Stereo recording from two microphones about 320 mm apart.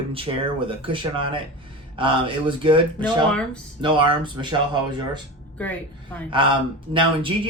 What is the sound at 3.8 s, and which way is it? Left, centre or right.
Speech, centre.